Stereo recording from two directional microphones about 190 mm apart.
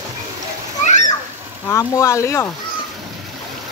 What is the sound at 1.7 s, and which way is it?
Speech, 15° left (ahead or behind).